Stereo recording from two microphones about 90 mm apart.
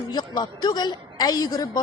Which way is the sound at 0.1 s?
50° left (ahead or behind).